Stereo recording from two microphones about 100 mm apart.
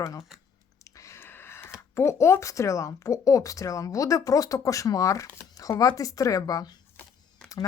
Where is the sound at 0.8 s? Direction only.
35° left (ahead or behind).